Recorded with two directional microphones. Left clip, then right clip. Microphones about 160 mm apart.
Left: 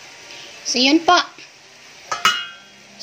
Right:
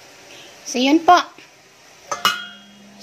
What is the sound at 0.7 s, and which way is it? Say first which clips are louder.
Speech: right 1 dB; 5° right (ahead or behind).